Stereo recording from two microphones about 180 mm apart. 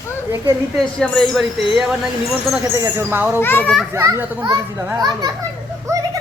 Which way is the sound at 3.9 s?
15° right (ahead or behind).